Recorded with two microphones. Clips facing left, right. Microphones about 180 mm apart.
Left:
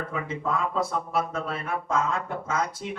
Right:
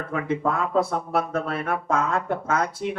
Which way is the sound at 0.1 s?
55° right (ahead or behind).